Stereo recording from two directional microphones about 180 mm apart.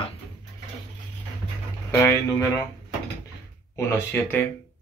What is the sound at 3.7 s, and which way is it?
Speech, 15° left (ahead or behind).